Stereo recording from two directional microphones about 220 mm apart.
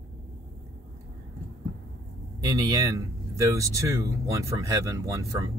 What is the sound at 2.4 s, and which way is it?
Speech, 15° right (ahead or behind).